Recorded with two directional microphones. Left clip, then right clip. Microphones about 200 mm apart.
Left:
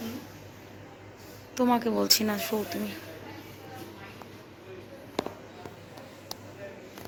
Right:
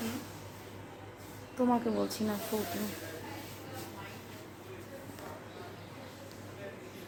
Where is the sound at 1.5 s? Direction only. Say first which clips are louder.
Left 5 dB; 25° left (ahead or behind).